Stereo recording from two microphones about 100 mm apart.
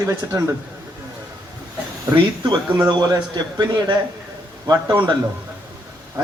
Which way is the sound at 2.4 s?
45° right (ahead or behind).